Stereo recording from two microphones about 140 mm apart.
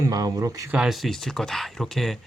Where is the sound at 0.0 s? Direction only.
25° right (ahead or behind).